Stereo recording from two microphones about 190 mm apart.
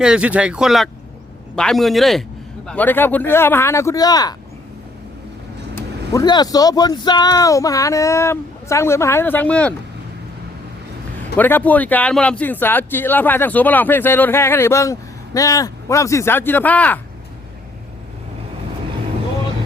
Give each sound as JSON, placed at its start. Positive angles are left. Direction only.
{"t": 0.0, "sound": "speech", "side_deg": -5}
{"t": 5.7, "sound": "speech", "side_deg": 20}
{"t": 11.3, "sound": "speech", "side_deg": 10}